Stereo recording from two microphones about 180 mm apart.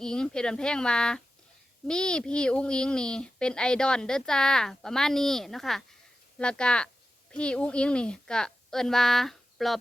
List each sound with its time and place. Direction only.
0.0 s speech: 5° left (ahead or behind)